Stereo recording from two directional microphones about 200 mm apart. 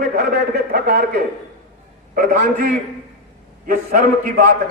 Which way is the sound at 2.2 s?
45° right (ahead or behind).